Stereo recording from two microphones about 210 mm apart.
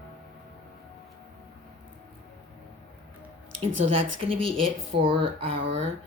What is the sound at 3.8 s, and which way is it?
Speech, 25° right (ahead or behind).